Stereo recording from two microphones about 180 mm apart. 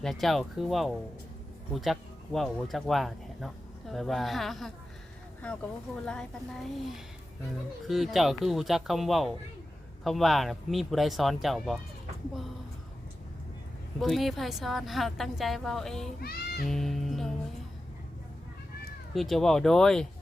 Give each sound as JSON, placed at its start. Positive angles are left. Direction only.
{"t": 0.0, "sound": "a woman's voice", "side_deg": 0}
{"t": 14.0, "sound": "a woman's voice", "side_deg": 0}
{"t": 16.2, "sound": "speech", "side_deg": 60}
{"t": 16.6, "sound": "a woman's voice", "side_deg": 0}
{"t": 19.1, "sound": "a woman's voice", "side_deg": 0}